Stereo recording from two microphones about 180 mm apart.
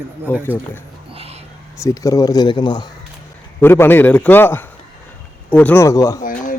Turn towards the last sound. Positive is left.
turn(degrees=50)  # may be behind; listen again after turning